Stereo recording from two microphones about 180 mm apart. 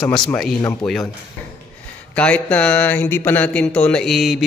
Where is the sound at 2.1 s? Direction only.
5° left (ahead or behind).